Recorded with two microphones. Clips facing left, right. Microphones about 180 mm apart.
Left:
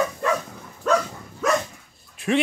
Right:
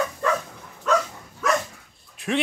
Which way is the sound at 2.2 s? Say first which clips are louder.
Left 4 dB; centre (ahead or behind).